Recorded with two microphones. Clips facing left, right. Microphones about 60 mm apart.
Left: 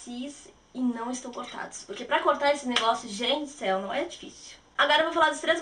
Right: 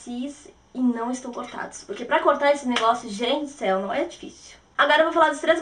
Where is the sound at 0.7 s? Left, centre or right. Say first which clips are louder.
Right 6 dB; centre.